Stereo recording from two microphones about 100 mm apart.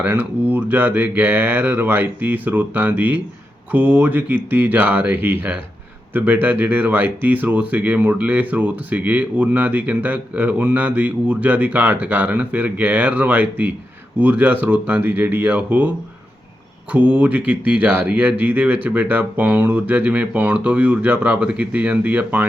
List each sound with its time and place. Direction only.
0.0 s speech: 15° right (ahead or behind)
16.9 s speech: 15° right (ahead or behind)